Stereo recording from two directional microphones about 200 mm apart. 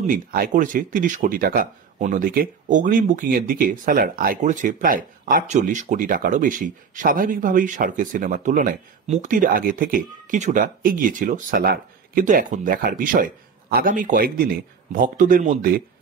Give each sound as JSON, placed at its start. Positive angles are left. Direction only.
{"t": 0.0, "sound": "speech", "side_deg": -45}